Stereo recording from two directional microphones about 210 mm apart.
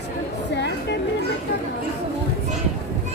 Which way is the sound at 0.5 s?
55° left (ahead or behind).